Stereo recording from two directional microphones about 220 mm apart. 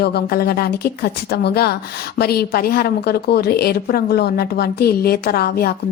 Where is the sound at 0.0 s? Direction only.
45° left (ahead or behind).